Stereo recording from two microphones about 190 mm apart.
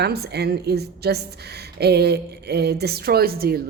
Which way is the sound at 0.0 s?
60° right (ahead or behind).